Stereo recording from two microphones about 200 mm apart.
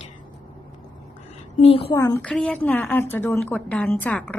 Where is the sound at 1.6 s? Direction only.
30° left (ahead or behind).